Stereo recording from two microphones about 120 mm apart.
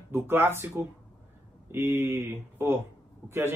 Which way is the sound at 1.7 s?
20° right (ahead or behind).